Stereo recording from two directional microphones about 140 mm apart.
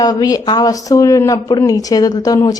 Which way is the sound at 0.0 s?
25° left (ahead or behind).